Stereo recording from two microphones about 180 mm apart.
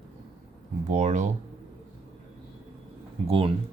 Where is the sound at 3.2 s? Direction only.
30° right (ahead or behind).